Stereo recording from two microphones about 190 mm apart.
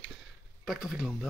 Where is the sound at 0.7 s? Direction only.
Centre (ahead or behind).